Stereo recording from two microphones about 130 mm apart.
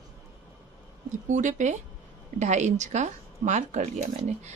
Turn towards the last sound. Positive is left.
turn(degrees=-60)  # may be behind; listen again after turning